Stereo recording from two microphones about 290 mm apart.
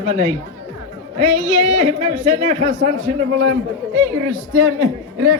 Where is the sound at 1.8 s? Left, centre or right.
Right.